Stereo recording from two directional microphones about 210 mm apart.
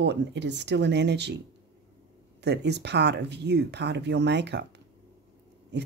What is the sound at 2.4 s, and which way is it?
Speech, 55° right (ahead or behind).